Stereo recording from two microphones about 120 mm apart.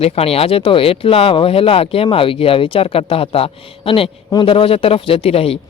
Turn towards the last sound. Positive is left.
turn(degrees=55)  # may be behind; listen again after turning